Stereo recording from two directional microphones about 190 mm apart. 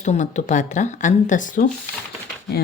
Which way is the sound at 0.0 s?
40° left (ahead or behind).